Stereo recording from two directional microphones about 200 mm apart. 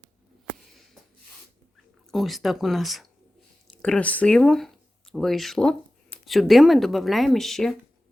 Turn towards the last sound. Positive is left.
turn(degrees=0)  # may be behind; listen again after turning